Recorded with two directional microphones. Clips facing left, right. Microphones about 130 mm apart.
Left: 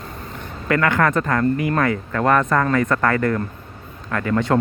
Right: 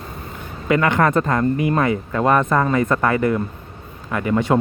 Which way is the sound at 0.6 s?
20° right (ahead or behind).